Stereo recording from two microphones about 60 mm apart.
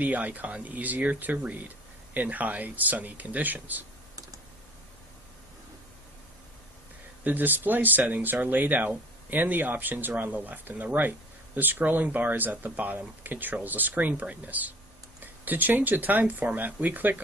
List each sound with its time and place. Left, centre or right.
0.0 s speech: right
7.3 s speech: right